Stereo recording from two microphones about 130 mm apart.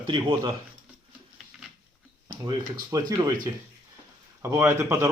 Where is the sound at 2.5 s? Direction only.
30° right (ahead or behind).